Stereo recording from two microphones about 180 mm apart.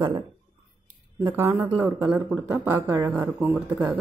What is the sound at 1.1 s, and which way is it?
Speech, 15° right (ahead or behind).